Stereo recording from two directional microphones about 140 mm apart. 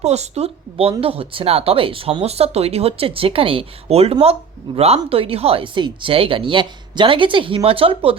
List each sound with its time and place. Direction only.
0.0 s speech: 50° right (ahead or behind)